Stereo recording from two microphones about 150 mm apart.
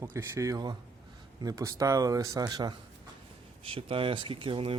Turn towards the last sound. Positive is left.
turn(degrees=-35)  # may be behind; listen again after turning